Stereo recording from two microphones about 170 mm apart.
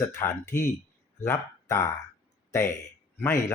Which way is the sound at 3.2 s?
15° left (ahead or behind).